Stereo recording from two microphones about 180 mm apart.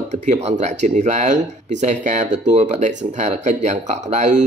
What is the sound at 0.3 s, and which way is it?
Speech, 40° right (ahead or behind).